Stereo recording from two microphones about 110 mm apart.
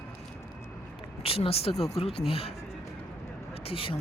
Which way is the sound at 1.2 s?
60° left (ahead or behind).